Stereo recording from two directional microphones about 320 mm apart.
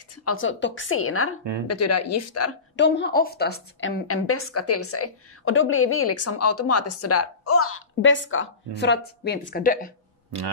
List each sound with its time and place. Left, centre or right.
0.2 s a woman's voice: left
2.7 s a woman's voice: left
4.1 s a woman's voice: left